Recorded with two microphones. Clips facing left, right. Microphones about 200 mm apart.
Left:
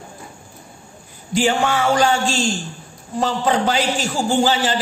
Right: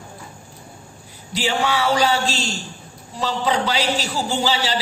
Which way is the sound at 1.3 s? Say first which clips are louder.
Left 4 dB; 50° left (ahead or behind).